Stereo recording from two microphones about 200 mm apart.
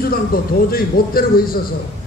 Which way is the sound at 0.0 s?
45° left (ahead or behind).